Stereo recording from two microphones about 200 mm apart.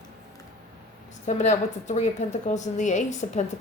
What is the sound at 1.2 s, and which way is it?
A woman's voice, 35° left (ahead or behind).